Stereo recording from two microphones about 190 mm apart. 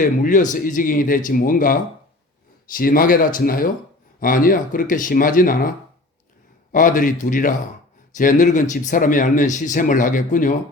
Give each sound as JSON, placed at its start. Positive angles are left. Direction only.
{"t": 0.0, "sound": "speech", "side_deg": 45}